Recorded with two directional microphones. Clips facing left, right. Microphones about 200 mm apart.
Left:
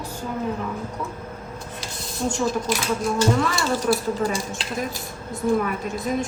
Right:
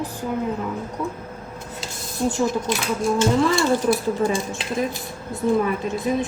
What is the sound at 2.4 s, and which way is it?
Speech, 20° right (ahead or behind).